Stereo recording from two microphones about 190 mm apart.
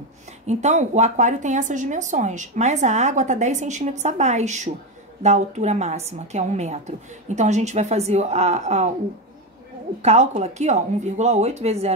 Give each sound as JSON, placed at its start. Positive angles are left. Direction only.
{"t": 0.5, "sound": "speech", "side_deg": -35}
{"t": 10.0, "sound": "speech", "side_deg": -35}